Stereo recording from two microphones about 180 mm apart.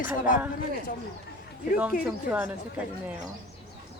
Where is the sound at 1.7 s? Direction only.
5° right (ahead or behind).